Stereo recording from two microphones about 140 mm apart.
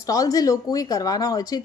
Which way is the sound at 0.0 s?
25° left (ahead or behind).